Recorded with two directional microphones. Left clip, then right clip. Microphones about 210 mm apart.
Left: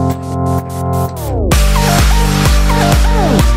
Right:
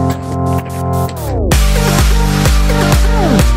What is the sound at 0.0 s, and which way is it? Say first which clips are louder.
Music: even; centre (ahead or behind).